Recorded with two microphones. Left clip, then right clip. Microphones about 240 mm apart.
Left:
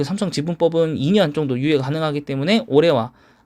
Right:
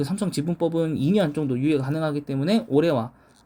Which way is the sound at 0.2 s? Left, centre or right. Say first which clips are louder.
Left 8 dB; centre.